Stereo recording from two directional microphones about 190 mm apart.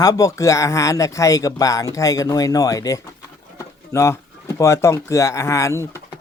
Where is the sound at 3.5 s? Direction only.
15° left (ahead or behind).